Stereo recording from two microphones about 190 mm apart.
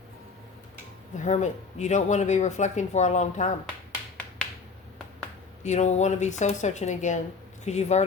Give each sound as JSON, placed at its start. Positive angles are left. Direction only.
{"t": 1.2, "sound": "speech", "side_deg": 40}
{"t": 5.6, "sound": "speech", "side_deg": 40}